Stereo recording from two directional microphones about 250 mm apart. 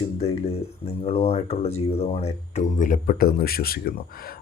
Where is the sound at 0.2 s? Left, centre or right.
Left.